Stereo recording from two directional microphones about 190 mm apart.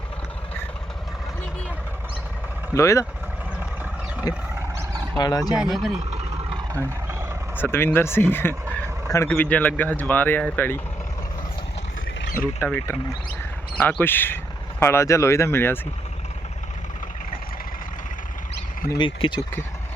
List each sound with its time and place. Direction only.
2.7 s speech: 15° left (ahead or behind)
4.3 s speech: 20° left (ahead or behind)
5.7 s speech: centre (ahead or behind)
6.1 s vehicle: 35° right (ahead or behind)
6.7 s vehicle: 15° right (ahead or behind)
7.5 s speech: 10° left (ahead or behind)
12.2 s vehicle: 50° left (ahead or behind)
12.5 s speech: 10° left (ahead or behind)
14.0 s speech: 10° left (ahead or behind)
18.9 s speech: 25° left (ahead or behind)